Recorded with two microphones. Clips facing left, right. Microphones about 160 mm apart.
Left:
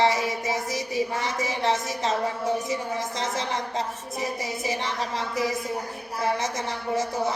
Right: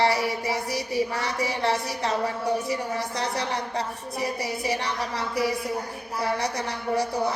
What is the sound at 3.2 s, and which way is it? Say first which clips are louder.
A woman's voice: even; 20° left (ahead or behind).